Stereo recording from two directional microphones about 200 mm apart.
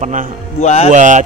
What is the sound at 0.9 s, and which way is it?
Speech, 40° right (ahead or behind).